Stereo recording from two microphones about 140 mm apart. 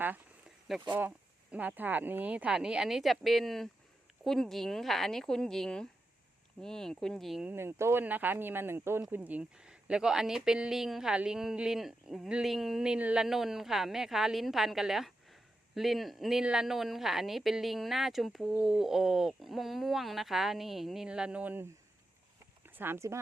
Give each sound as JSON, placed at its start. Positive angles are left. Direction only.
{"t": 0.9, "sound": "speech", "side_deg": -10}
{"t": 7.5, "sound": "speech", "side_deg": -15}